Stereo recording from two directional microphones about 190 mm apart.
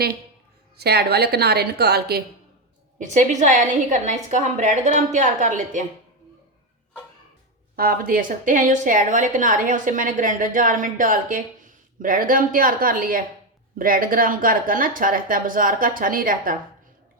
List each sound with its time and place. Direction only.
0.8 s a woman's voice: 55° right (ahead or behind)
3.0 s a woman's voice: 40° right (ahead or behind)
7.8 s a woman's voice: 50° right (ahead or behind)